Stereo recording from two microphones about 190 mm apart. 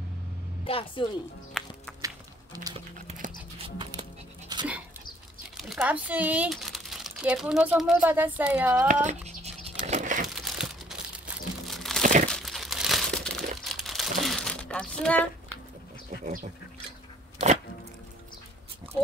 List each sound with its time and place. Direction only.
0.7 s a woman's voice: 30° left (ahead or behind)
1.6 s music: centre (ahead or behind)
2.0 s music: 20° right (ahead or behind)
3.1 s music: 35° right (ahead or behind)
4.5 s dog: 20° right (ahead or behind)
5.6 s speech: 5° right (ahead or behind)
8.8 s a sound: 40° right (ahead or behind)
10.3 s crumpling: centre (ahead or behind)
12.0 s crumpling: 40° right (ahead or behind)
12.3 s crumpling: centre (ahead or behind)